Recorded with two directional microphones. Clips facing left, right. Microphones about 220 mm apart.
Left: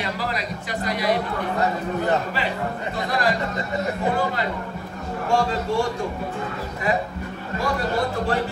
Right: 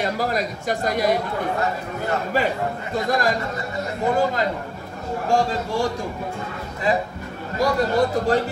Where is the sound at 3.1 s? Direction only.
45° right (ahead or behind).